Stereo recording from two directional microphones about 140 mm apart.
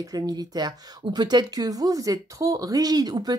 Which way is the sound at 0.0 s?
25° right (ahead or behind).